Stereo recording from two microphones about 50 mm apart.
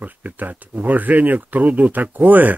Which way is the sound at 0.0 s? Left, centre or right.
Right.